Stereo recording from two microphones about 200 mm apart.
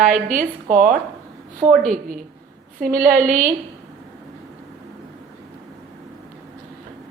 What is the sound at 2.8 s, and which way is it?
Speech, 45° right (ahead or behind).